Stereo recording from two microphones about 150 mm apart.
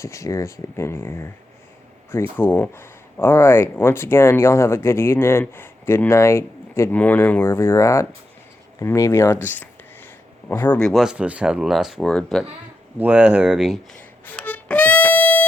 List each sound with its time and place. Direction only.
0.0 s speech: 20° left (ahead or behind)
10.8 s speech: centre (ahead or behind)
13.0 s speech: 10° right (ahead or behind)
14.3 s music: 10° left (ahead or behind)